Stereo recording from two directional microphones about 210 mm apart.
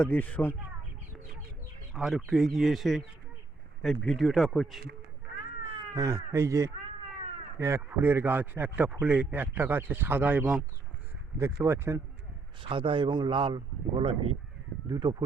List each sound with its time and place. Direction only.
0.0 s speech: 5° left (ahead or behind)
1.9 s speech: 5° right (ahead or behind)
5.9 s speech: 15° right (ahead or behind)
12.6 s a man's voice: 25° right (ahead or behind)